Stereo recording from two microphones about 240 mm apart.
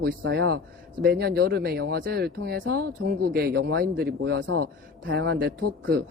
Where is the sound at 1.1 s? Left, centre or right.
Right.